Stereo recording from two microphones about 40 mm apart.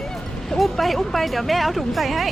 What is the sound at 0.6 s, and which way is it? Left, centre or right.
Speech, centre.